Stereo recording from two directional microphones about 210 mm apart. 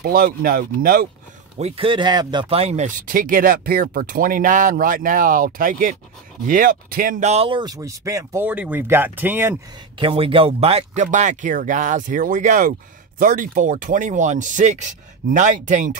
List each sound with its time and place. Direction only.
0.0 s speech: 45° right (ahead or behind)
1.6 s speech: 25° right (ahead or behind)
9.9 s speech: 25° right (ahead or behind)